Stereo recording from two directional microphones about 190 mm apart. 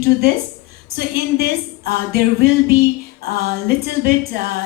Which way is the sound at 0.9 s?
55° right (ahead or behind).